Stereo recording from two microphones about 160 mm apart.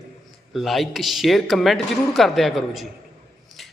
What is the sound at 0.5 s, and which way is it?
A man's voice, centre (ahead or behind).